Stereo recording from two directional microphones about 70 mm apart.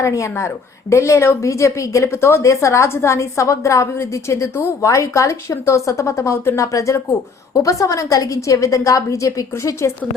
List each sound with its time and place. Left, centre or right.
0.0 s a woman's voice: left
4.9 s a woman's voice: left